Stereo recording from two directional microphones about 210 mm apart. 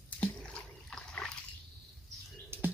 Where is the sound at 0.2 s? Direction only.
5° left (ahead or behind).